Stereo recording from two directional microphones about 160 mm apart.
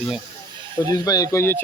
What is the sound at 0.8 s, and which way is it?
Speech, 20° left (ahead or behind).